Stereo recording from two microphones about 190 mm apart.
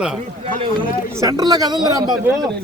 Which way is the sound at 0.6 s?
25° right (ahead or behind).